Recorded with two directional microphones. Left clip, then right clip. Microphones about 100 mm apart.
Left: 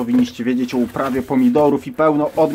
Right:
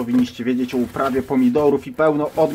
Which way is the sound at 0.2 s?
40° left (ahead or behind).